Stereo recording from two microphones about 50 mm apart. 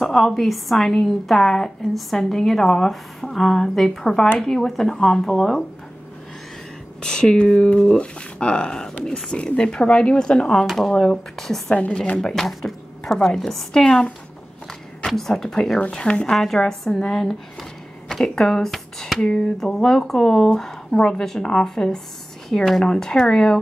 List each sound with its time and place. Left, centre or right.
0.0 s a woman's voice: centre
7.0 s a woman's voice: centre
10.7 s speech: centre
11.7 s speech: left
12.2 s a woman's voice: centre
15.0 s a woman's voice: centre
15.9 s speech: left
16.3 s speech: centre
19.2 s speech: centre
19.6 s a woman's voice: centre